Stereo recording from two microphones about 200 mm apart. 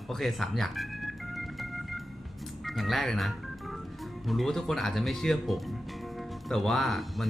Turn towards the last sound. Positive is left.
turn(degrees=0)  # may be behind; listen again after turning